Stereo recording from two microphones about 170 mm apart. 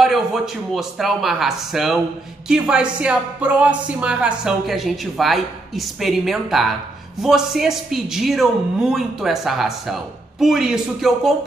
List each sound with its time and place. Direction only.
0.0 s speech: centre (ahead or behind)